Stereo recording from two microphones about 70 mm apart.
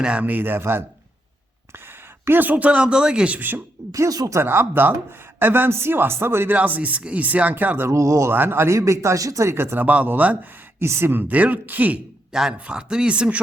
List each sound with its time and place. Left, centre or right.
0.0 s speech: centre; by 0.9 s right
2.2 s speech: right
3.9 s speech: right
4.4 s a man's voice: right
6.6 s speech: right
7.9 s speech: right
8.3 s a man's voice: right
10.8 s speech: right
12.3 s a man's voice: centre